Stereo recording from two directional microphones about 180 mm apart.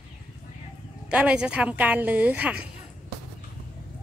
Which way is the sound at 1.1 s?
5° right (ahead or behind).